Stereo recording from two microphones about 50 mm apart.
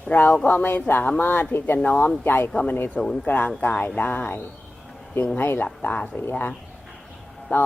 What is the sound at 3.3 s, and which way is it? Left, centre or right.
Speech, left.